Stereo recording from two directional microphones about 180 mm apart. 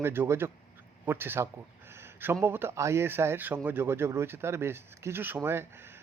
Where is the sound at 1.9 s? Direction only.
15° right (ahead or behind).